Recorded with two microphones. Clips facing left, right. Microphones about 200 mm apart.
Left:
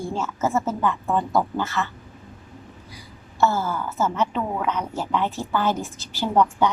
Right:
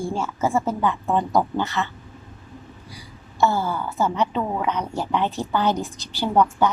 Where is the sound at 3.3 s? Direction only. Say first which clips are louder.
Right 1 dB; 15° right (ahead or behind).